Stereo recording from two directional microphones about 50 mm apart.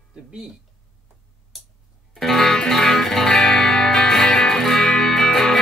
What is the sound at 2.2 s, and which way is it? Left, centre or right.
Music, centre.